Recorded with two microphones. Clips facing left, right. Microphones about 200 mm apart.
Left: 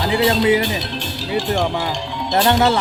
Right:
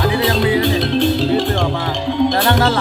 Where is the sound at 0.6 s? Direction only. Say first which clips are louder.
Right 9 dB; 55° right (ahead or behind).